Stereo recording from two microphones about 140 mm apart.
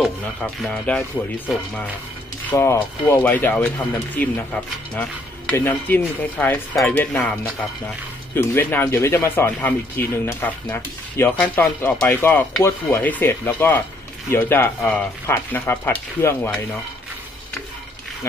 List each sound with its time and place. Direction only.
0.4 s speech: 10° left (ahead or behind)
2.5 s speech: 20° left (ahead or behind)
8.4 s speech: 15° left (ahead or behind)